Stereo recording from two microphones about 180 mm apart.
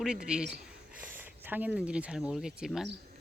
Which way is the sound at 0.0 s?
5° right (ahead or behind).